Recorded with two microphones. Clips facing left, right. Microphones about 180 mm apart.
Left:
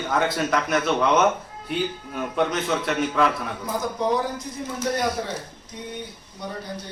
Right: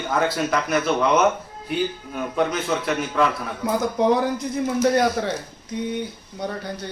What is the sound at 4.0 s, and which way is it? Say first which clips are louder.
Speech: right 6 dB; 60° right (ahead or behind).